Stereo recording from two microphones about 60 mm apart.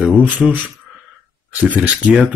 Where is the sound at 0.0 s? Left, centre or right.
Right.